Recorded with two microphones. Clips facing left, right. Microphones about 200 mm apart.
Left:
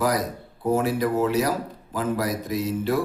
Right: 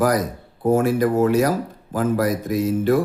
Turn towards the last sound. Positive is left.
turn(degrees=-50)  # may be behind; listen again after turning